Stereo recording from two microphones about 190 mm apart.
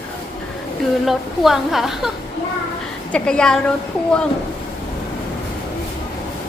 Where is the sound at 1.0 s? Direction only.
Centre (ahead or behind).